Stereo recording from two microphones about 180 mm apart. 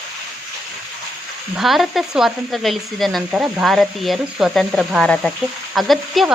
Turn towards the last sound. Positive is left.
turn(degrees=0)  # may be behind; listen again after turning